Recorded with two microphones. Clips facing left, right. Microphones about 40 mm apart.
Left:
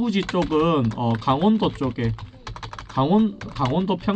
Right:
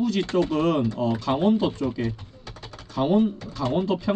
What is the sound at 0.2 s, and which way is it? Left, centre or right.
Speech, left.